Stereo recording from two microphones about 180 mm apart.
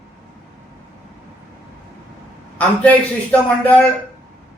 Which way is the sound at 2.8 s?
10° left (ahead or behind).